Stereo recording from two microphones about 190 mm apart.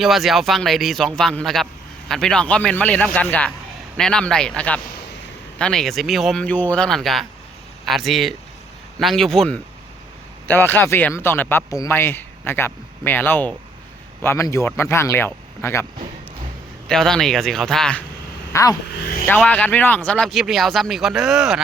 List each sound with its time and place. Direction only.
0.0 s speech: centre (ahead or behind)
16.9 s speech: 5° left (ahead or behind)
18.5 s speech: 20° left (ahead or behind)
19.3 s speech: 10° left (ahead or behind)